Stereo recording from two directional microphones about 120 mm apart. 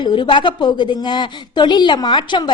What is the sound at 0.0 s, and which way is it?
A woman's voice, 40° left (ahead or behind).